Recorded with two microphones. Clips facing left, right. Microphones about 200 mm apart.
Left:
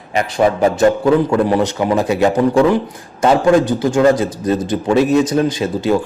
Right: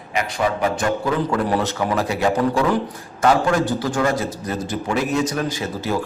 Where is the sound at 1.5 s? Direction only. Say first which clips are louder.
Left 6 dB; 15° left (ahead or behind).